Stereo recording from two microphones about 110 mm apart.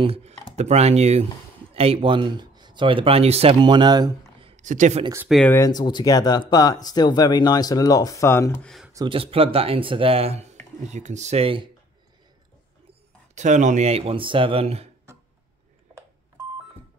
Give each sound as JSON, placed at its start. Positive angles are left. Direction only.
{"t": 0.0, "sound": "chopping", "side_deg": -65}
{"t": 1.7, "sound": "speech", "side_deg": -60}
{"t": 3.5, "sound": "speech", "side_deg": -45}
{"t": 4.4, "sound": "a sound", "side_deg": -75}
{"t": 5.4, "sound": "speech", "side_deg": 20}
{"t": 5.7, "sound": "speech", "side_deg": 40}
{"t": 9.1, "sound": "speech", "side_deg": -60}
{"t": 10.9, "sound": "speech", "side_deg": -90}
{"t": 13.3, "sound": "speech", "side_deg": -90}